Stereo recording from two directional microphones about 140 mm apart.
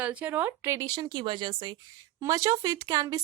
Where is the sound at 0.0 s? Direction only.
10° right (ahead or behind).